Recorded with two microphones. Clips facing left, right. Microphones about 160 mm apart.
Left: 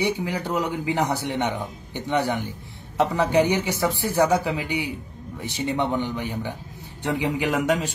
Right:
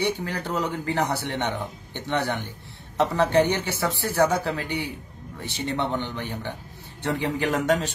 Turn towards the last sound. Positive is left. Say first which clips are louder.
# even
turn(degrees=10)  # may be behind; listen again after turning